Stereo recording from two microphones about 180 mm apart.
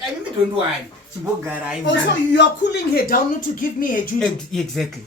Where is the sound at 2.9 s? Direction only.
50° left (ahead or behind).